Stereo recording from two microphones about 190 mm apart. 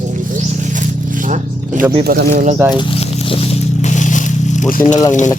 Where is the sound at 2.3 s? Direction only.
40° right (ahead or behind).